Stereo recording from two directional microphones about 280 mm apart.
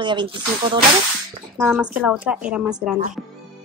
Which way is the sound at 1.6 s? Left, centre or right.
Centre.